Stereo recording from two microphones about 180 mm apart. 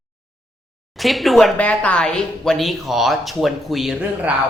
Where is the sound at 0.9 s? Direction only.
Centre (ahead or behind).